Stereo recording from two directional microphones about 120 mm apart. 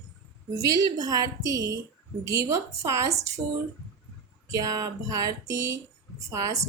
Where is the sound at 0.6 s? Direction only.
30° right (ahead or behind).